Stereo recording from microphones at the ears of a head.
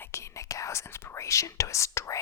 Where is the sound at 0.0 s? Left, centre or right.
Left.